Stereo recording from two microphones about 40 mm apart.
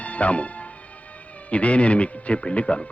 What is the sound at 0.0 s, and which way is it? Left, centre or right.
Speech, left.